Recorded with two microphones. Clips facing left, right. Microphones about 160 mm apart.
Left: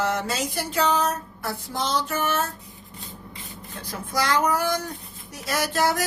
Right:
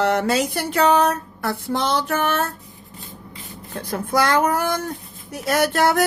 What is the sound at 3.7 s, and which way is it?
Speech, 55° right (ahead or behind).